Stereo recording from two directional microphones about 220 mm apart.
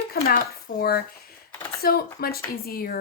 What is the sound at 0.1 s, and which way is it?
Speech, 40° left (ahead or behind).